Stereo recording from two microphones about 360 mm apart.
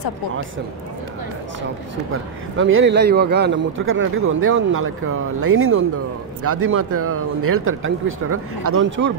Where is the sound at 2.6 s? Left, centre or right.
Right.